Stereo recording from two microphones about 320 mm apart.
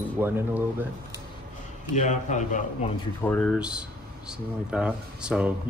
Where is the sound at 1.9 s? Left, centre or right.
Left.